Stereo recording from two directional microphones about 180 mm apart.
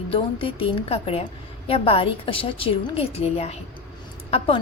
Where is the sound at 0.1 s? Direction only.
30° left (ahead or behind).